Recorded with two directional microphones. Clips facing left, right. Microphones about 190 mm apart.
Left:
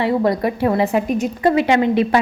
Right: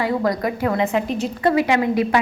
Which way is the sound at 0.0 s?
25° left (ahead or behind).